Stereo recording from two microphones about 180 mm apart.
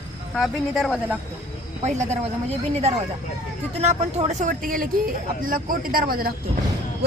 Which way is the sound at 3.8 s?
35° right (ahead or behind).